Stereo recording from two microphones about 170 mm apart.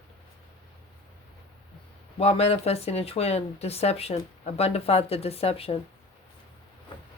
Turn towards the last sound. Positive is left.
turn(degrees=35)  # may be behind; listen again after turning